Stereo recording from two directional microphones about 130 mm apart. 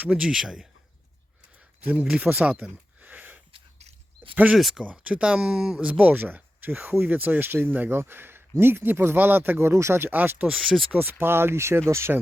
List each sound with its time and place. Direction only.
0.0 s speech: 5° right (ahead or behind)
1.8 s speech: 15° right (ahead or behind)
3.5 s a sound: 50° right (ahead or behind)
4.5 s speech: 5° right (ahead or behind)
10.9 s speech: 15° right (ahead or behind)